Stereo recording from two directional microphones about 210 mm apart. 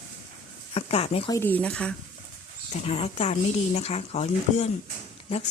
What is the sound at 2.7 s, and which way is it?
Speech, 30° left (ahead or behind).